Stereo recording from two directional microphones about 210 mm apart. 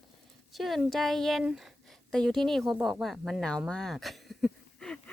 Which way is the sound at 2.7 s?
Centre (ahead or behind).